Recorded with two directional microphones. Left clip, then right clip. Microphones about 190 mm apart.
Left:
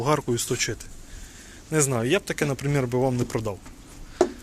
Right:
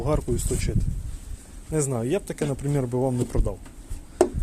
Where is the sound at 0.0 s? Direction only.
Centre (ahead or behind); by 3.6 s 15° right (ahead or behind).